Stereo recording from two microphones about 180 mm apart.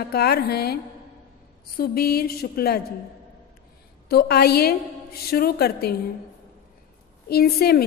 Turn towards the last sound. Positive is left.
turn(degrees=60)  # may be behind; listen again after turning